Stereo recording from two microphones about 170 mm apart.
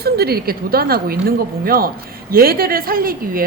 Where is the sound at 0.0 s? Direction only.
65° right (ahead or behind).